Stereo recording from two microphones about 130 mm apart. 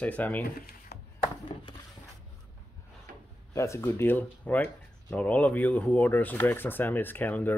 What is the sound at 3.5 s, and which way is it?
Speech, 20° left (ahead or behind).